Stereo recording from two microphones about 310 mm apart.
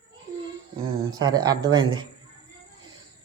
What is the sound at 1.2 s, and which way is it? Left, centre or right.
Speech, centre.